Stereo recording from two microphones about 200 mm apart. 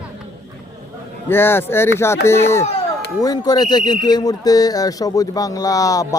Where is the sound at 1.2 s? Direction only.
10° left (ahead or behind).